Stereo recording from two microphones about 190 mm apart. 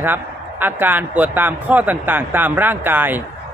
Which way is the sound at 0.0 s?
10° right (ahead or behind).